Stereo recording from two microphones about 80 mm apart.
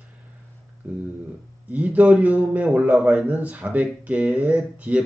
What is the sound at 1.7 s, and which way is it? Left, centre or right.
A man's voice, centre.